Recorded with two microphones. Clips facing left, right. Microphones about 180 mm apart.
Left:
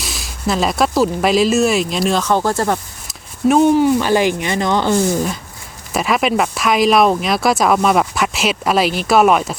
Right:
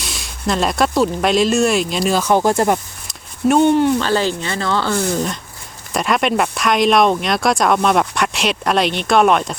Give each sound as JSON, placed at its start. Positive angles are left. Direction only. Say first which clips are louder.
{"t": 0.0, "sound": "speech", "louder": "left 1 dB", "side_deg": 0}
{"t": 2.3, "sound": "speech", "louder": "right 2 dB", "side_deg": -15}
{"t": 3.1, "sound": "speech", "louder": "left 1 dB", "side_deg": 0}